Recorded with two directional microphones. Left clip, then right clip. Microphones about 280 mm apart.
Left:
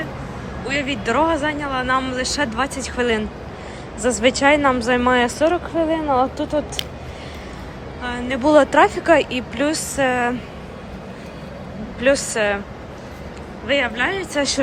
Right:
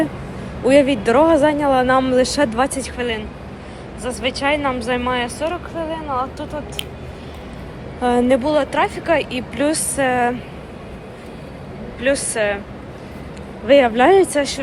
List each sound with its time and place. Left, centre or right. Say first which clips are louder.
0.7 s speech: right 8 dB; centre
8.0 s speech: right 10 dB; centre
8.4 s speech: left 4 dB; centre
11.9 s speech: left 1 dB; centre
13.7 s speech: right 8 dB; centre